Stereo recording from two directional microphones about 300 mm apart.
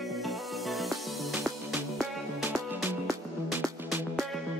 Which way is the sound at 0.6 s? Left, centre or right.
Centre.